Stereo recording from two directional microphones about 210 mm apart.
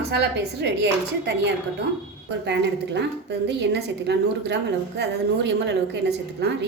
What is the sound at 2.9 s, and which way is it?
A woman's voice, 55° right (ahead or behind).